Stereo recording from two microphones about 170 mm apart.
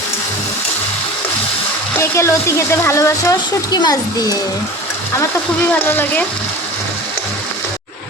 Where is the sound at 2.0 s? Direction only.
15° left (ahead or behind).